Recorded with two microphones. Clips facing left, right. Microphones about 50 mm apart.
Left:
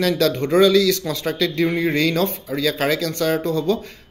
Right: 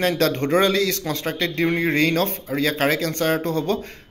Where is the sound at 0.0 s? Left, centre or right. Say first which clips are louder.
Left 1 dB; right.